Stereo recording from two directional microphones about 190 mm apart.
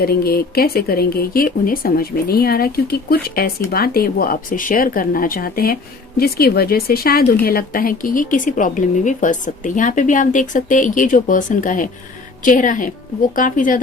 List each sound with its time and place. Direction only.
0.0 s speech: 55° left (ahead or behind)